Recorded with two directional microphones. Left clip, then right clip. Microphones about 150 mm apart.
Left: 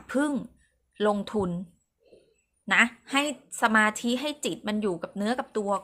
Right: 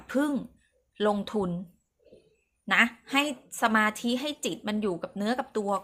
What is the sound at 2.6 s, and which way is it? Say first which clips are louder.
A woman's voice: left 1 dB; 15° left (ahead or behind).